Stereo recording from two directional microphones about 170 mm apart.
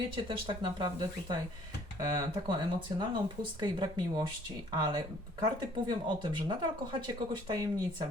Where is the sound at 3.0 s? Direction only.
25° right (ahead or behind).